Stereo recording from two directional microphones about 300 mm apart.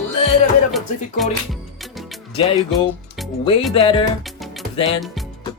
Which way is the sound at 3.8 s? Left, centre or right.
Centre.